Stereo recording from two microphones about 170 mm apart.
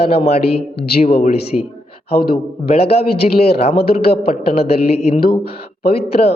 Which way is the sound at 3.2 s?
45° left (ahead or behind).